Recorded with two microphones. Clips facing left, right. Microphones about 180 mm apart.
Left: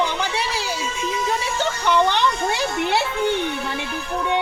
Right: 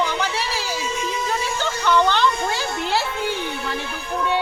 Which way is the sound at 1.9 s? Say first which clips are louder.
Right 1 dB; 15° left (ahead or behind).